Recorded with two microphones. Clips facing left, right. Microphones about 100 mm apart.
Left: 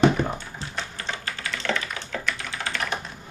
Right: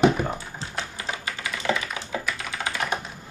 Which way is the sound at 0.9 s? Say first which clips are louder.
Right 1 dB; 10° right (ahead or behind).